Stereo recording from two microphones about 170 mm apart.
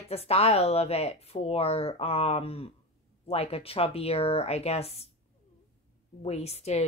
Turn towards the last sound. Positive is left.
turn(degrees=40)  # may be behind; listen again after turning